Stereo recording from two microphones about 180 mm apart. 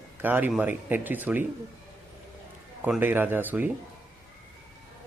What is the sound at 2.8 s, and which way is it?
Speech, 10° right (ahead or behind).